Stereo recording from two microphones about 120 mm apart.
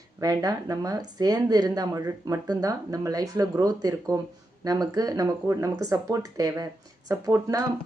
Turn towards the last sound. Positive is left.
turn(degrees=-30)  # may be behind; listen again after turning